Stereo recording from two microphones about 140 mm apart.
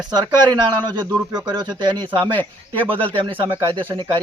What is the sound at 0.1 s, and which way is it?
Speech, 30° right (ahead or behind).